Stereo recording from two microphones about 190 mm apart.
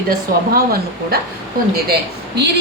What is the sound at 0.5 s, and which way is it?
A woman's voice, 50° right (ahead or behind).